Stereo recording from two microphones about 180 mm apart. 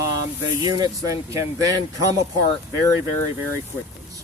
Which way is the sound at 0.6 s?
20° right (ahead or behind).